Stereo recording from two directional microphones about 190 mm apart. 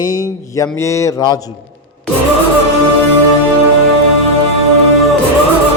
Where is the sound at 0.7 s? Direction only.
15° left (ahead or behind).